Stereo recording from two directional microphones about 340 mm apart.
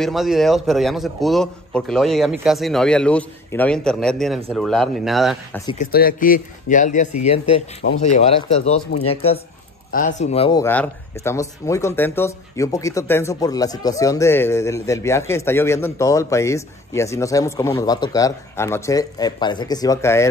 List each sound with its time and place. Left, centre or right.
0.0 s a man's voice: centre
5.7 s speech: left
7.8 s speech: left
8.3 s speech: centre